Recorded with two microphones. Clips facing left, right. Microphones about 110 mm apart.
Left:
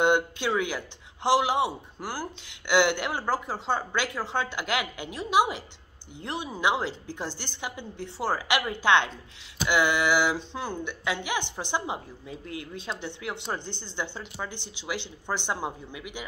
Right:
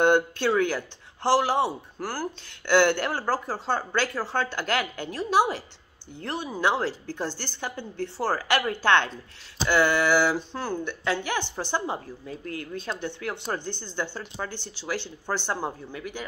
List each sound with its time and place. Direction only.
0.0 s a sound: 15° left (ahead or behind)
0.6 s speech: 15° left (ahead or behind)
12.3 s speech: 45° right (ahead or behind)
13.0 s speech: 20° left (ahead or behind)